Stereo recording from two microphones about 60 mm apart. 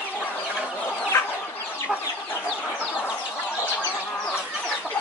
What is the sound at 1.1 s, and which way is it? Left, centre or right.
Chicken, left.